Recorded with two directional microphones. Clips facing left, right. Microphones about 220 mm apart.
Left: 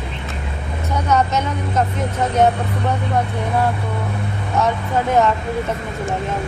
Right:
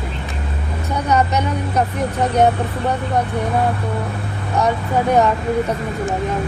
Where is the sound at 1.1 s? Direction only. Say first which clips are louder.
Right 1 dB; 15° right (ahead or behind).